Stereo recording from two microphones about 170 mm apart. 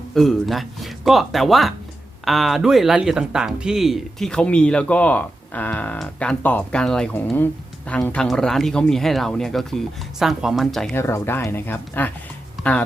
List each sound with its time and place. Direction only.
0.1 s speech: centre (ahead or behind)
10.9 s speech: 15° left (ahead or behind)
12.6 s a sound: centre (ahead or behind)